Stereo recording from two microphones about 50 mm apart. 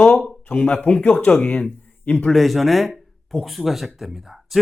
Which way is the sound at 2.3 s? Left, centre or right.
Centre.